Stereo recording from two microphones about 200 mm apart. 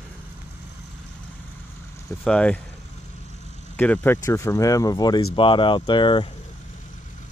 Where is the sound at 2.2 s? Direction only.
5° left (ahead or behind).